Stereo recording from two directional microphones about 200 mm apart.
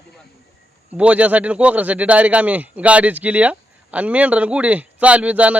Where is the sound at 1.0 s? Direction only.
5° right (ahead or behind).